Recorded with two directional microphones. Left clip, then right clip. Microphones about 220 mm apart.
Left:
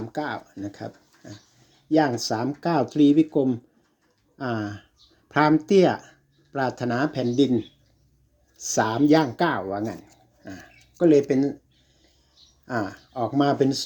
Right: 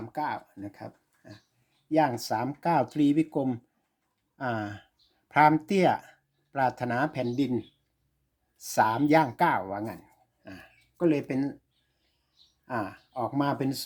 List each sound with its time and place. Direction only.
0.1 s speech: 10° right (ahead or behind)
8.6 s speech: 15° right (ahead or behind)
12.6 s speech: 10° right (ahead or behind)